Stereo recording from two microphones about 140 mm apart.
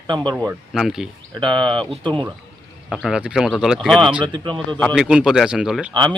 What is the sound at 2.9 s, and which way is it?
Speech, centre (ahead or behind).